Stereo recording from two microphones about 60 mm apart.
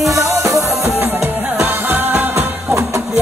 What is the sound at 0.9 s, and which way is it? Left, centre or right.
Music, right.